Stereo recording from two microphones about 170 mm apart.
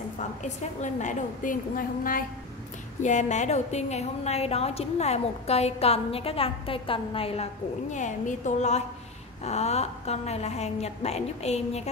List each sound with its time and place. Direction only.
0.2 s a woman's voice: 45° left (ahead or behind)
7.9 s a woman's voice: 45° left (ahead or behind)